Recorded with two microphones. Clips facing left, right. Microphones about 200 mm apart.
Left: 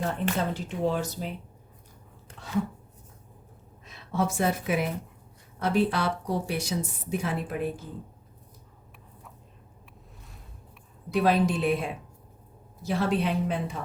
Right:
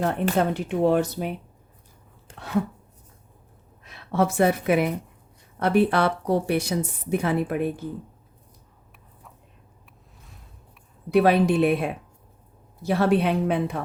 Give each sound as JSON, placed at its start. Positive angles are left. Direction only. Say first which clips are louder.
{"t": 0.0, "sound": "a woman's voice", "louder": "right 6 dB", "side_deg": -60}
{"t": 3.8, "sound": "a woman's voice", "louder": "right 5 dB", "side_deg": -65}
{"t": 11.1, "sound": "a woman's voice", "louder": "right 5 dB", "side_deg": -65}